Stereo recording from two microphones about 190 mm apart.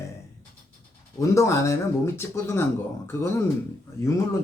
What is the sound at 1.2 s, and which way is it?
Speech, 15° left (ahead or behind).